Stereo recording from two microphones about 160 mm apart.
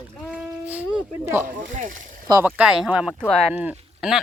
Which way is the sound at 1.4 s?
55° right (ahead or behind).